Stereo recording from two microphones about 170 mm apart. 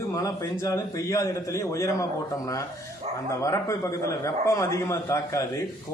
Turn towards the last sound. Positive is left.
turn(degrees=15)  # may be behind; listen again after turning